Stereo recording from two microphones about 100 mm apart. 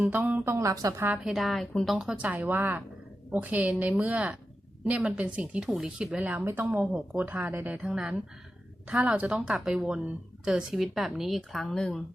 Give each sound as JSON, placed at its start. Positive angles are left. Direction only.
{"t": 0.0, "sound": "speech", "side_deg": -20}
{"t": 1.2, "sound": "speech", "side_deg": 0}